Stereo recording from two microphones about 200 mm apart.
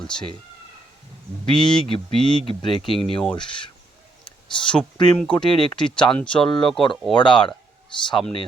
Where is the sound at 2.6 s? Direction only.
25° left (ahead or behind).